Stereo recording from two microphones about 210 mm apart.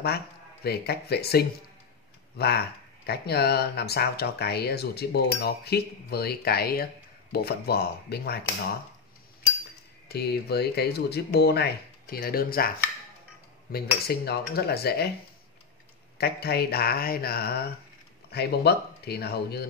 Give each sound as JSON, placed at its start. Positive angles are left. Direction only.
{"t": 0.7, "sound": "speech", "side_deg": 50}
{"t": 10.0, "sound": "speech", "side_deg": 50}
{"t": 16.2, "sound": "speech", "side_deg": 50}